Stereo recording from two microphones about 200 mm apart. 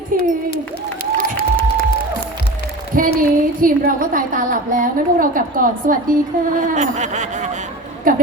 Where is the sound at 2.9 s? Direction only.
45° right (ahead or behind).